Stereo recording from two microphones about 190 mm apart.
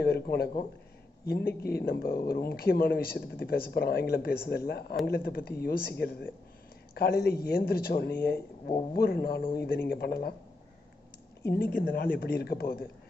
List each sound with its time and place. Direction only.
0.0 s speech: 55° left (ahead or behind)
11.4 s speech: 55° left (ahead or behind)